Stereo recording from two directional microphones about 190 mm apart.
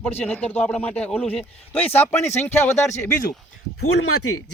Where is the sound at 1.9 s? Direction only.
35° left (ahead or behind).